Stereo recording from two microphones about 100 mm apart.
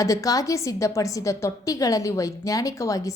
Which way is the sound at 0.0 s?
35° left (ahead or behind).